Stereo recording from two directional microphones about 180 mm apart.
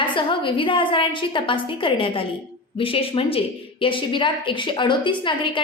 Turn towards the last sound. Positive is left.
turn(degrees=25)  # may be behind; listen again after turning